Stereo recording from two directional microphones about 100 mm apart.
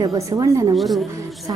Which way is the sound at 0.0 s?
40° right (ahead or behind).